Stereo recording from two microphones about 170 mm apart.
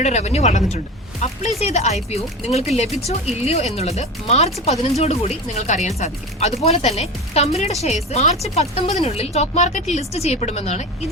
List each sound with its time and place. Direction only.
0.0 s speech: 40° left (ahead or behind)